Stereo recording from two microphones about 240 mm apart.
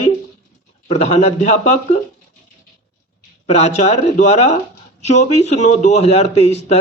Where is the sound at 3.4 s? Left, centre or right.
Left.